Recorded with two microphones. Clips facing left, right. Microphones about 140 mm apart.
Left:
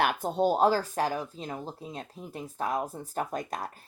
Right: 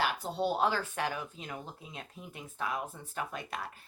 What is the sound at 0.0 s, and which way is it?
Speech, 55° left (ahead or behind).